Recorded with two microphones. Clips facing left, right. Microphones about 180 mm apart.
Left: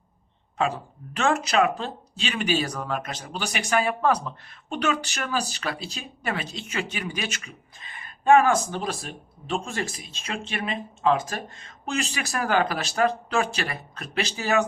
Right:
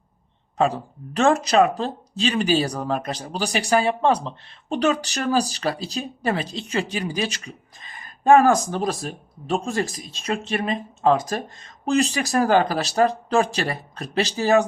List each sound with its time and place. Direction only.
0.6 s speech: 35° right (ahead or behind)